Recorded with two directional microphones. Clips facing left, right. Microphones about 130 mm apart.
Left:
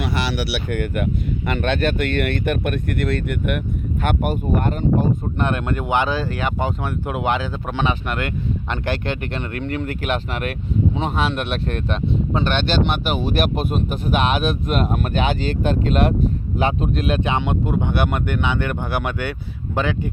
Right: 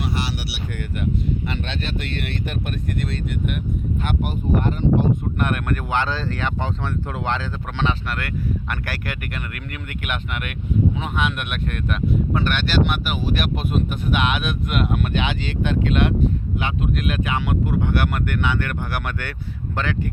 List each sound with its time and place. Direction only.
0.0 s speech: 80° left; by 5.0 s 45° left (ahead or behind)
5.4 s speech: 25° left (ahead or behind)